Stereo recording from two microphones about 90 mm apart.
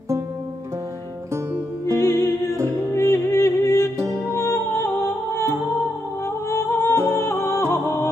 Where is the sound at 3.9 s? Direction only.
30° right (ahead or behind).